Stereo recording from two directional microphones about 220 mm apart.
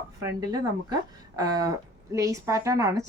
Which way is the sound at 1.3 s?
15° right (ahead or behind).